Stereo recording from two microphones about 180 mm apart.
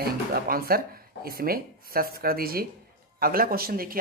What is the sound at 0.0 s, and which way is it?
Speech, 55° right (ahead or behind).